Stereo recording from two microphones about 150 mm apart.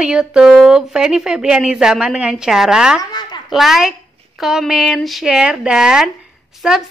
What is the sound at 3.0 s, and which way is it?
Speech, 30° left (ahead or behind).